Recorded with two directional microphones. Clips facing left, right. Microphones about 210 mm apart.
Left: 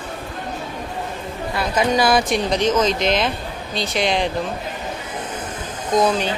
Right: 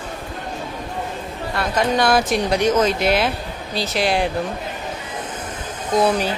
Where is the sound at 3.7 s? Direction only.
5° right (ahead or behind).